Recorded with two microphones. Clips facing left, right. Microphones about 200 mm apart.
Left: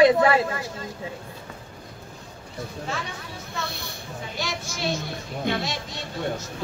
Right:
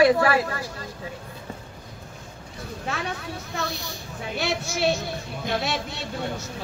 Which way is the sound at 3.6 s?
55° left (ahead or behind).